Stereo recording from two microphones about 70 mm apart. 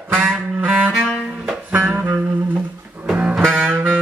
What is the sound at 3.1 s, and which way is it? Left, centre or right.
Music, centre.